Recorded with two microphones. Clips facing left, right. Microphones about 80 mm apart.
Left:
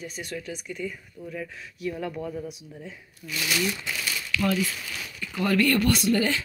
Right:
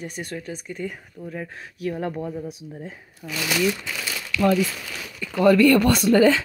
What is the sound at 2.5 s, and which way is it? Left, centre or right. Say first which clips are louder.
Speech: right 4 dB; right.